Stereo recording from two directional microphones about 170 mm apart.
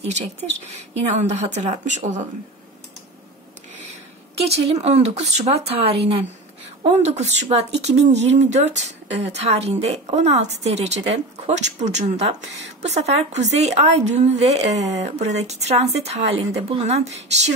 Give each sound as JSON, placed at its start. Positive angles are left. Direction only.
{"t": 0.7, "sound": "a woman's voice", "side_deg": -45}
{"t": 4.4, "sound": "speech", "side_deg": -40}